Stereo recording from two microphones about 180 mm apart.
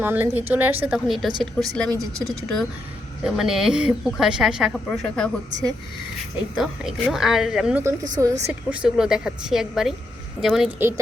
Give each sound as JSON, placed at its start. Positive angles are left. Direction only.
{"t": 0.0, "sound": "speech", "side_deg": -10}
{"t": 6.6, "sound": "speech", "side_deg": 0}
{"t": 8.0, "sound": "a woman's voice", "side_deg": -20}
{"t": 8.7, "sound": "speech", "side_deg": -5}